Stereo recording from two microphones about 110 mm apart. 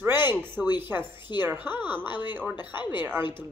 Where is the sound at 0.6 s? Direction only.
5° right (ahead or behind).